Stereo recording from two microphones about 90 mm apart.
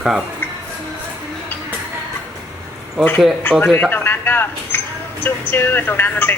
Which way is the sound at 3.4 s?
20° left (ahead or behind).